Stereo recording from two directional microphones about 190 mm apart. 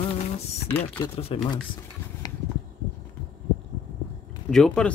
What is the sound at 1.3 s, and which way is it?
Speech, 30° left (ahead or behind).